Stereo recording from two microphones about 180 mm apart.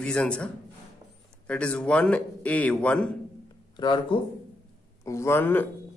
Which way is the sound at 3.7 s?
25° left (ahead or behind).